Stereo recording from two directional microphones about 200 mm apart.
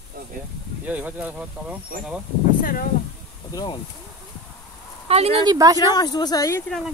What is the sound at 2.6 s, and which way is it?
Speech, 45° left (ahead or behind).